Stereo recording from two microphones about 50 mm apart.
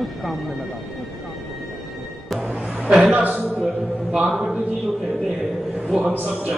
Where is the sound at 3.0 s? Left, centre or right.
Right.